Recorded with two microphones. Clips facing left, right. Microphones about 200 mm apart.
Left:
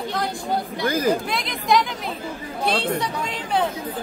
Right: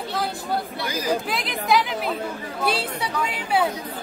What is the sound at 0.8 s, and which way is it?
Speech, 55° left (ahead or behind).